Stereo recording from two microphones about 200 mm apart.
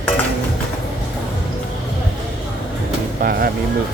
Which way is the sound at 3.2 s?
50° right (ahead or behind).